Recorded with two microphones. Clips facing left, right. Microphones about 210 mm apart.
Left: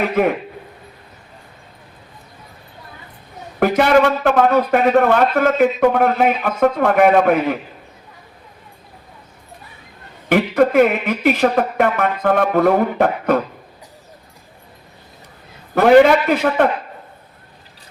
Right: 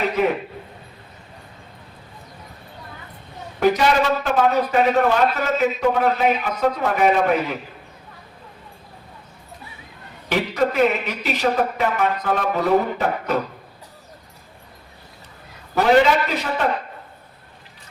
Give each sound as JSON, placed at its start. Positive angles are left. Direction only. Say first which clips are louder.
{"t": 3.6, "sound": "a man's voice", "louder": "left 4 dB", "side_deg": 55}
{"t": 10.2, "sound": "a man's voice", "louder": "left 6 dB", "side_deg": 55}
{"t": 15.7, "sound": "a man's voice", "louder": "left 6 dB", "side_deg": 55}